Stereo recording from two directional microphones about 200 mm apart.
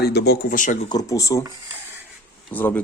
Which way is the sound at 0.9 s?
15° left (ahead or behind).